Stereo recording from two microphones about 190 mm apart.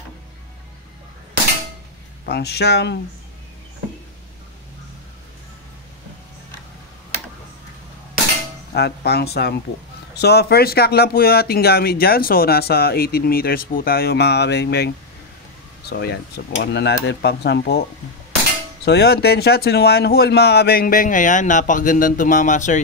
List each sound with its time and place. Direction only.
2.2 s speech: 60° left (ahead or behind)
8.7 s speech: 60° left (ahead or behind)
18.9 s speech: 60° left (ahead or behind); by 22.8 s 40° left (ahead or behind)